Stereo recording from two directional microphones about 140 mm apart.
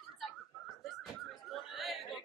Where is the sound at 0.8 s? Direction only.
Centre (ahead or behind).